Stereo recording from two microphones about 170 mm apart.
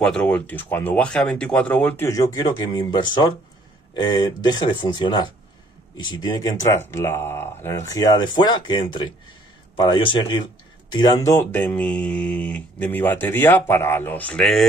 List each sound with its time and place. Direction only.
0.0 s speech: 5° left (ahead or behind); by 3.3 s 25° left (ahead or behind)
4.5 s speech: 25° left (ahead or behind); by 14.7 s centre (ahead or behind)